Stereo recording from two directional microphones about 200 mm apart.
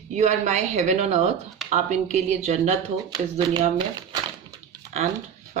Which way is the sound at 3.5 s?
25° right (ahead or behind).